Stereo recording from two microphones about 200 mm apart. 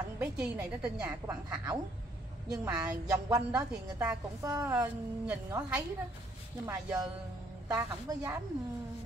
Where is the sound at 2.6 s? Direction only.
5° right (ahead or behind).